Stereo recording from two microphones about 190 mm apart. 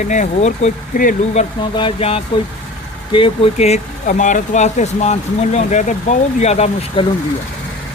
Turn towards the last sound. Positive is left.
turn(degrees=30)  # may be behind; listen again after turning